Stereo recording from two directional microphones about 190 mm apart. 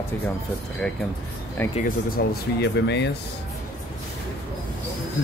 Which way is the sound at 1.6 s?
10° left (ahead or behind).